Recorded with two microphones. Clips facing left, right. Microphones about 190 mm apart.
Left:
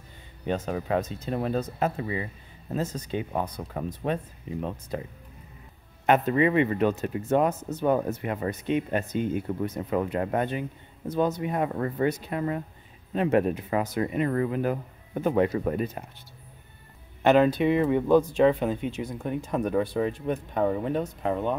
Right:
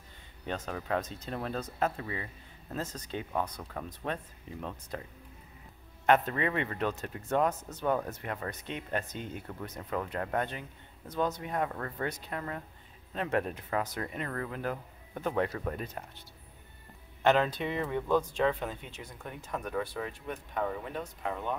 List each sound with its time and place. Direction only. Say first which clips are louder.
0.7 s speech: left 3 dB; 10° left (ahead or behind)
3.4 s speech: left 7 dB; 20° left (ahead or behind)
6.0 s speech: left 5 dB; 10° left (ahead or behind)
17.2 s speech: left 7 dB; 10° left (ahead or behind); by 21.5 s 35° left (ahead or behind)